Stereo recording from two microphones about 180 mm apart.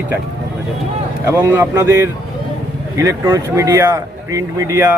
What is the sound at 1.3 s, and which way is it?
A man's voice, 10° right (ahead or behind).